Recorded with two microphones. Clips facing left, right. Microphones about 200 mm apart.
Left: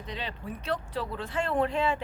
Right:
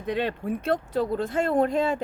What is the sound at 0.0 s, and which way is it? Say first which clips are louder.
Speech: right 11 dB; 55° right (ahead or behind).